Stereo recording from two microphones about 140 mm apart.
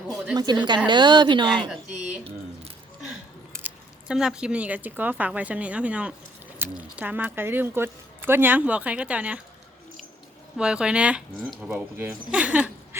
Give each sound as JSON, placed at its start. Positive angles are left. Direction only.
{"t": 0.3, "sound": "a woman's voice", "side_deg": -30}
{"t": 4.1, "sound": "speech", "side_deg": -5}
{"t": 10.6, "sound": "speech", "side_deg": -5}